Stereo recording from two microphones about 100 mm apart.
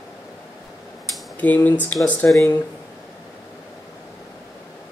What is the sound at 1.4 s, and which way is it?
Speech, 15° left (ahead or behind).